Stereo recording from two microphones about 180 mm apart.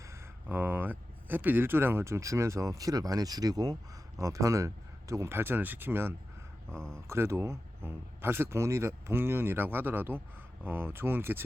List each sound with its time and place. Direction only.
0.0 s speech: 15° right (ahead or behind)
6.7 s speech: 5° left (ahead or behind)
7.1 s speech: 15° right (ahead or behind)